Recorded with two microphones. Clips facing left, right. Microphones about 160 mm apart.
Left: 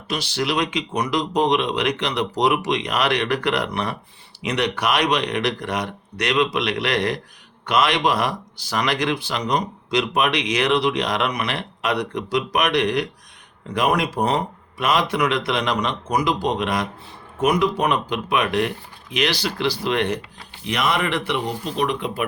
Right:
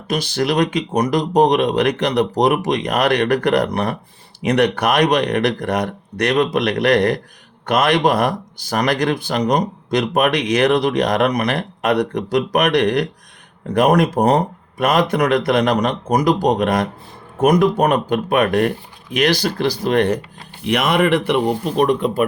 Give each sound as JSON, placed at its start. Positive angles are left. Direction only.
{"t": 0.1, "sound": "speech", "side_deg": -50}
{"t": 20.7, "sound": "speech", "side_deg": -60}